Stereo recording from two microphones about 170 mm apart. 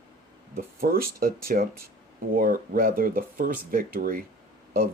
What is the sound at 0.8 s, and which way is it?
Speech, 60° right (ahead or behind).